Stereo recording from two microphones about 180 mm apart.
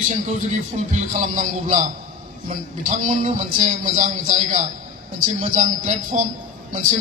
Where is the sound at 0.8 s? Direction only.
40° right (ahead or behind).